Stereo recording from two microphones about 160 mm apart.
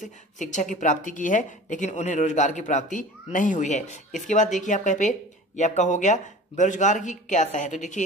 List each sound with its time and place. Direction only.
0.0 s a woman's voice: 50° left (ahead or behind)